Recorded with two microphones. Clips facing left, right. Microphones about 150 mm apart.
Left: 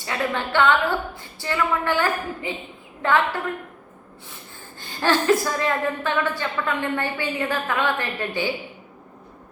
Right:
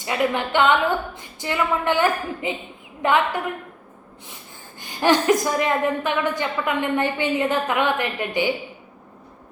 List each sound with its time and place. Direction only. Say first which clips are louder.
0.0 s a woman's voice: right 3 dB; 15° right (ahead or behind)
4.8 s a woman's voice: right 3 dB; 15° right (ahead or behind)